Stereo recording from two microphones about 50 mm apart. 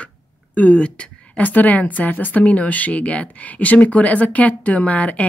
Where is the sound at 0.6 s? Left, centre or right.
Left.